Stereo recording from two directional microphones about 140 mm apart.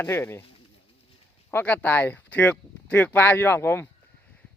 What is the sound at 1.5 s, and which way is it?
Speech, 10° left (ahead or behind).